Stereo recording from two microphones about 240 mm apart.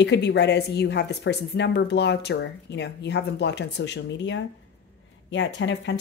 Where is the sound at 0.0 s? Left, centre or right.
Left.